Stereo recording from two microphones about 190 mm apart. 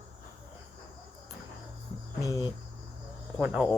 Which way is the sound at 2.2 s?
20° left (ahead or behind).